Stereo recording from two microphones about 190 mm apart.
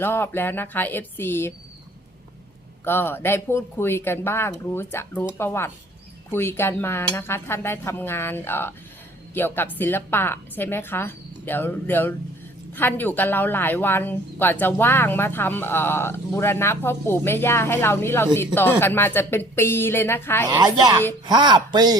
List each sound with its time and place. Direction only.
0.0 s a woman's voice: 10° left (ahead or behind)
2.8 s a woman's voice: 10° left (ahead or behind)
20.6 s speech: 20° right (ahead or behind)